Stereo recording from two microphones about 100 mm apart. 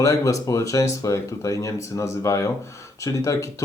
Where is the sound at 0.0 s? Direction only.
35° left (ahead or behind).